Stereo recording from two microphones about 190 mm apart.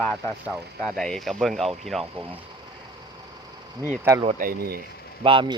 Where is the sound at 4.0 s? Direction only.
15° right (ahead or behind).